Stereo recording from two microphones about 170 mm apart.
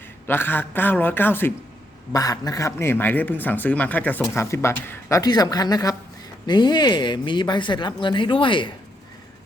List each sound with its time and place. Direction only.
0.3 s speech: 10° left (ahead or behind); by 8.7 s 30° left (ahead or behind)